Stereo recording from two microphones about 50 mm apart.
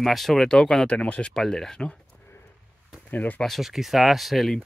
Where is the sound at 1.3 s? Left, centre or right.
Centre.